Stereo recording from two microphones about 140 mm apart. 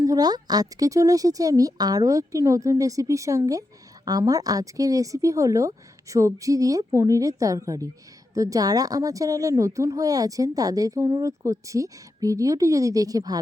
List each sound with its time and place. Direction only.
0.0 s speech: 25° right (ahead or behind)